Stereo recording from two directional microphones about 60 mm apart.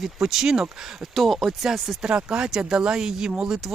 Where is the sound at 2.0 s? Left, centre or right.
Centre.